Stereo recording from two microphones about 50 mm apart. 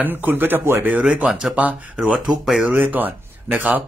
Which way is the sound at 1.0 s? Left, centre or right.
Centre.